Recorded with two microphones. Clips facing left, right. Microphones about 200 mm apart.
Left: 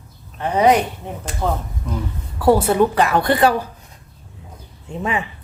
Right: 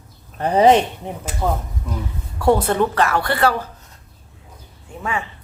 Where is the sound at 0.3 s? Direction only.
35° right (ahead or behind).